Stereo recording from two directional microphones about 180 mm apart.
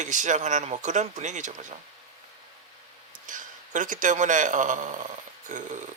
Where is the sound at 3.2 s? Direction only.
45° right (ahead or behind).